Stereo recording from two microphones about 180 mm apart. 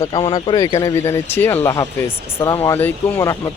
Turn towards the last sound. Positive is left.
turn(degrees=15)  # may be behind; listen again after turning